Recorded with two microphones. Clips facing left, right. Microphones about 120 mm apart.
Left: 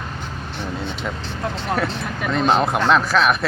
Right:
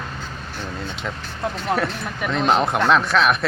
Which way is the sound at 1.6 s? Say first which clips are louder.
Even; centre (ahead or behind).